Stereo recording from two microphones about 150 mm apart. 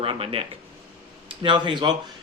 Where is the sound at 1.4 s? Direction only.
30° right (ahead or behind).